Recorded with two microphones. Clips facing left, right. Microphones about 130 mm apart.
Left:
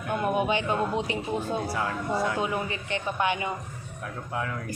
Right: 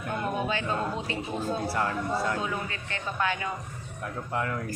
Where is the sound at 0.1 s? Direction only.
15° left (ahead or behind).